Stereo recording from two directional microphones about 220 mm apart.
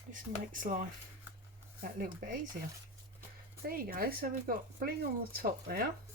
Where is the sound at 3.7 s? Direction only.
40° right (ahead or behind).